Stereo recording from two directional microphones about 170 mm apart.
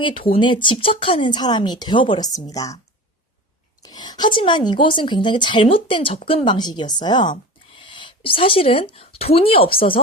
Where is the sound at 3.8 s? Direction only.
25° left (ahead or behind).